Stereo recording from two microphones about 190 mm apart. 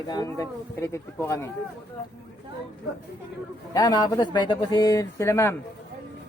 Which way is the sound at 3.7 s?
20° left (ahead or behind).